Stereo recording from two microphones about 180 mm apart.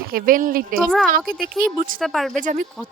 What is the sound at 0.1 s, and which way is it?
A woman's voice, 50° right (ahead or behind).